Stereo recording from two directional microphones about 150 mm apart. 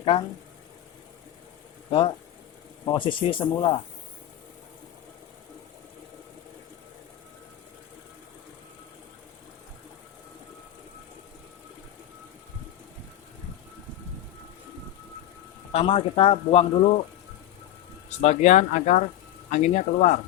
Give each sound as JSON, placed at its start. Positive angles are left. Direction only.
{"t": 1.9, "sound": "speech", "side_deg": 35}
{"t": 15.7, "sound": "speech", "side_deg": 40}
{"t": 18.2, "sound": "speech", "side_deg": 50}